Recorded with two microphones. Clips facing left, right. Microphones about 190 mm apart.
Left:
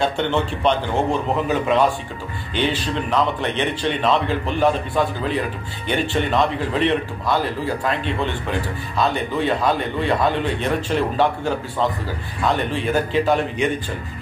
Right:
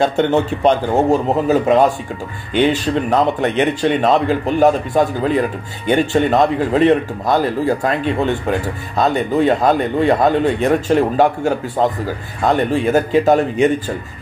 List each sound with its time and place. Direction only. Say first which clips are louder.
0.0 s speech: right 6 dB; 45° right (ahead or behind)